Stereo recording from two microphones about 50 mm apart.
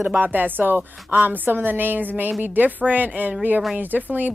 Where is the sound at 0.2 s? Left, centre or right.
Right.